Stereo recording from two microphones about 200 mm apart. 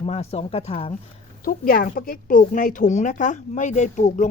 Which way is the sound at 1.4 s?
45° left (ahead or behind).